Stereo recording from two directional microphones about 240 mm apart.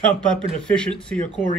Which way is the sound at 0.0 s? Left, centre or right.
Centre.